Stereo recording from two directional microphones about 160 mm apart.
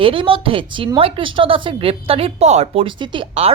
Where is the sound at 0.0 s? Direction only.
35° right (ahead or behind).